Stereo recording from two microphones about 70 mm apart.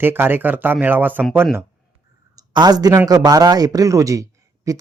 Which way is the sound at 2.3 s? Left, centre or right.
Right.